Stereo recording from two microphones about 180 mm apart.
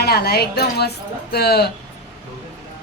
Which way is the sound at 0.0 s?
60° left (ahead or behind).